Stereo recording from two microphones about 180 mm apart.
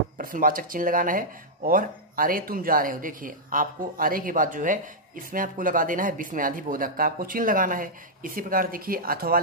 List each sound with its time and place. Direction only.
0.2 s speech: 50° right (ahead or behind)